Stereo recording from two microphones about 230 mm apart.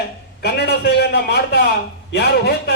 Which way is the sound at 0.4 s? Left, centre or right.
Left.